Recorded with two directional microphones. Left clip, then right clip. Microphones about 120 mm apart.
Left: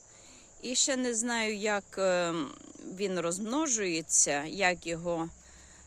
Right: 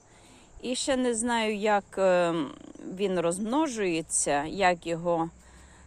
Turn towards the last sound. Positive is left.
turn(degrees=35)  # may be behind; listen again after turning